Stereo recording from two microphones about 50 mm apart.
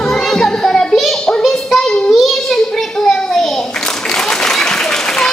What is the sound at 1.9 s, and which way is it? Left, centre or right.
Child singing, centre.